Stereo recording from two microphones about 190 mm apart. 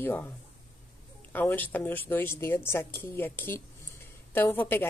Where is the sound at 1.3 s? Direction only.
10° left (ahead or behind).